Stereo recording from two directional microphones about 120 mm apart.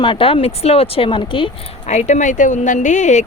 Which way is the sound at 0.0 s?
45° left (ahead or behind).